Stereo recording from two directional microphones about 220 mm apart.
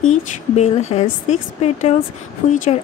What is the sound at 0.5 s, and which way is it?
Speech, 30° left (ahead or behind).